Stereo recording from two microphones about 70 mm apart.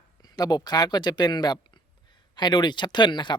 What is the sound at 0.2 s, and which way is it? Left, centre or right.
Speech, left.